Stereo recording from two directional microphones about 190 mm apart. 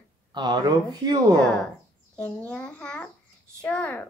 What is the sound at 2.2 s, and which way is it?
A child's voice, 5° left (ahead or behind).